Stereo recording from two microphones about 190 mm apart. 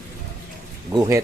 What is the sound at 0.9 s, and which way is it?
Speech, 15° right (ahead or behind).